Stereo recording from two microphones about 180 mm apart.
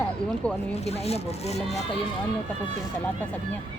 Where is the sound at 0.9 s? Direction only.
35° left (ahead or behind).